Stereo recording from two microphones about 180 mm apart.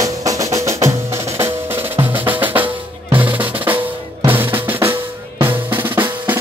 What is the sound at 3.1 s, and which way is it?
Drum, 10° right (ahead or behind).